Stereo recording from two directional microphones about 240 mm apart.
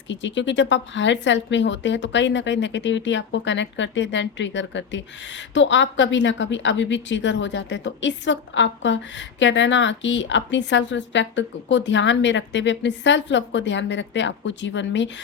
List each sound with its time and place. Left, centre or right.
0.1 s speech: left